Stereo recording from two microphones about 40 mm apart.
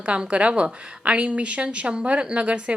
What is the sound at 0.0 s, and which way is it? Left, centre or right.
A woman's voice, right.